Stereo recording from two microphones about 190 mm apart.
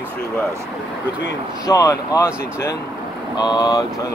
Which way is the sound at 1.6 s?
15° left (ahead or behind).